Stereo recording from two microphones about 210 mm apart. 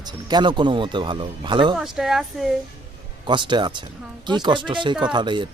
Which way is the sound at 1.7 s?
Centre (ahead or behind).